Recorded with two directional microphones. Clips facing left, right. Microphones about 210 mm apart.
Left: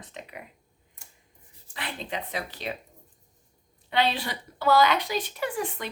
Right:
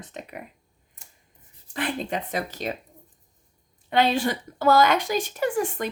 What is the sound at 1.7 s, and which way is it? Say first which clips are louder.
Speech: right 7 dB; 50° right (ahead or behind).